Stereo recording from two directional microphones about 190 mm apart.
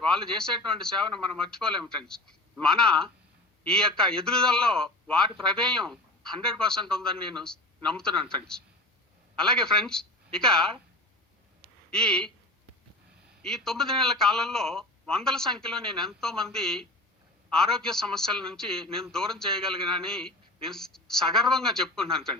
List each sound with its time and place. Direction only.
0.1 s a man's voice: 5° left (ahead or behind)
0.9 s speech: 25° right (ahead or behind)
1.4 s a man's voice: 5° left (ahead or behind)
9.3 s a woman's voice: 5° left (ahead or behind)
11.9 s speech: 5° left (ahead or behind)
13.4 s a man's voice: centre (ahead or behind)